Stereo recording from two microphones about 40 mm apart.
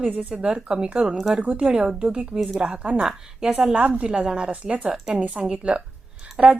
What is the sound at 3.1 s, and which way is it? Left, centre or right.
Speech, centre.